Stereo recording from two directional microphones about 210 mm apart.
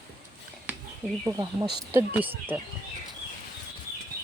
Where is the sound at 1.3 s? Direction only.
20° right (ahead or behind).